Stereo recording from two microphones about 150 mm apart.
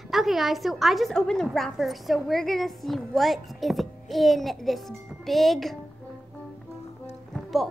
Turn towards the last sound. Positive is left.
turn(degrees=0)  # may be behind; listen again after turning